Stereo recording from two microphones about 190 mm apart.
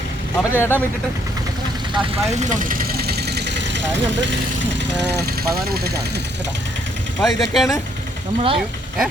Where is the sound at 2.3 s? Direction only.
40° right (ahead or behind); by 6.0 s 55° right (ahead or behind).